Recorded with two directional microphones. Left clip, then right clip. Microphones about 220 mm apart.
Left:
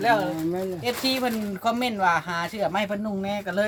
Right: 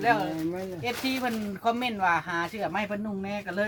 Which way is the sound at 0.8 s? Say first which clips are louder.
Left 3 dB; 50° left (ahead or behind).